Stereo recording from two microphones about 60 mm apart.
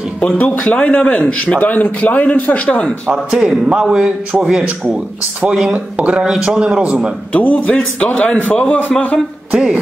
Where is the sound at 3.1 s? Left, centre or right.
Centre.